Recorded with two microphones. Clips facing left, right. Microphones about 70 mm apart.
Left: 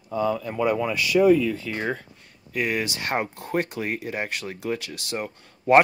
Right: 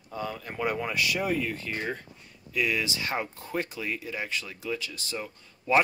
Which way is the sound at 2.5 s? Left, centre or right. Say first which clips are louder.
Left 2 dB; left.